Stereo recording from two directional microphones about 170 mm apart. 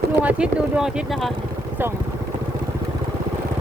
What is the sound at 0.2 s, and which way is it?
Speech, 5° right (ahead or behind).